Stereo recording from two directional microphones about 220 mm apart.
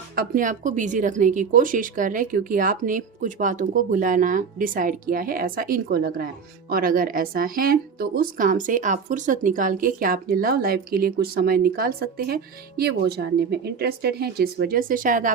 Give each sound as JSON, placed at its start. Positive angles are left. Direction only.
{"t": 0.2, "sound": "a woman's voice", "side_deg": -35}